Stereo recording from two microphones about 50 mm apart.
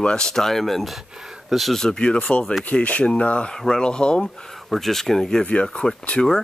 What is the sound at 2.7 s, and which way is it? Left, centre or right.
Speech, left.